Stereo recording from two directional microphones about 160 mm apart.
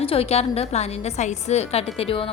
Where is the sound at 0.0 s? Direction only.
40° left (ahead or behind).